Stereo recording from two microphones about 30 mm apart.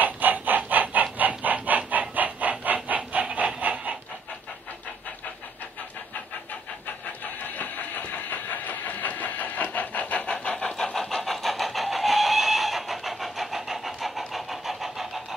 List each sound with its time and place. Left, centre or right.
0.0 s chicken: right
1.1 s a sound: right
7.1 s vehicle: left
10.3 s vehicle: left
10.8 s vehicle: centre
11.2 s vehicle: centre